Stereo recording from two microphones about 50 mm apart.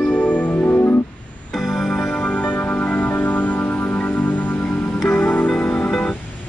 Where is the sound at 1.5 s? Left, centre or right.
Centre.